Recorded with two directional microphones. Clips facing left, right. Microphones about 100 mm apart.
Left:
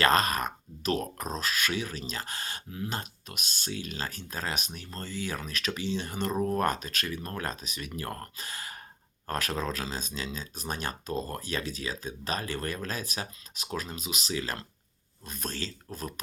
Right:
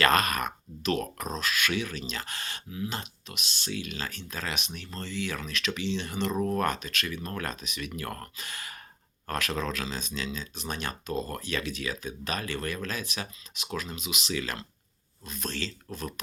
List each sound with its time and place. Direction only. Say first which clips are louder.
0.0 s speech: even; 30° left (ahead or behind)